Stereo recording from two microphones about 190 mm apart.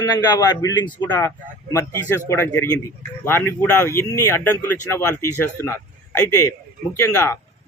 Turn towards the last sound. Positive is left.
turn(degrees=15)  # may be behind; listen again after turning